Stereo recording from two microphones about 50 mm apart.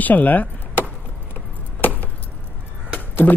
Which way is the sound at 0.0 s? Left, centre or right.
Left.